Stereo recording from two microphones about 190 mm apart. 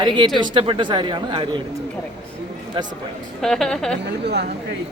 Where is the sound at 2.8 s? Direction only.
25° right (ahead or behind).